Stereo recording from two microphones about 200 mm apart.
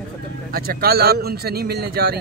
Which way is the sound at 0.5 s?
50° right (ahead or behind).